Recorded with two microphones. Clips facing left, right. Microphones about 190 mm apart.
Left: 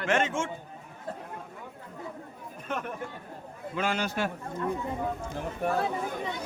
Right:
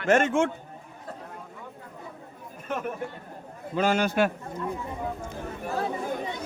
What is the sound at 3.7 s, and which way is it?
Speech, 40° right (ahead or behind).